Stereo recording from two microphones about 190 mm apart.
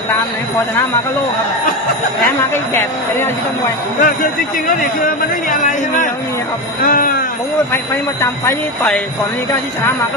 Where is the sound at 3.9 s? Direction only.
45° left (ahead or behind).